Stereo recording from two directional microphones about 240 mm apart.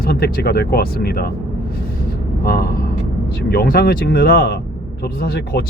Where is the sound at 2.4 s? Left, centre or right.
Left.